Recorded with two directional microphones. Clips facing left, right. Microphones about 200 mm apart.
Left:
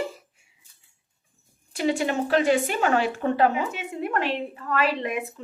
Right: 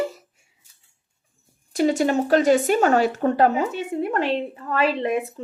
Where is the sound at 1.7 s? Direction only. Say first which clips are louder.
Right 5 dB; 40° right (ahead or behind).